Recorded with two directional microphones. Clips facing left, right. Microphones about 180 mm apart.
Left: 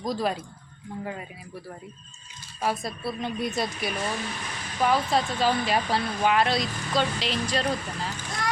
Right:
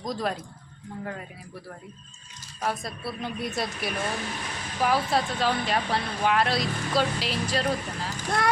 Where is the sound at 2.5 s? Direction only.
5° left (ahead or behind).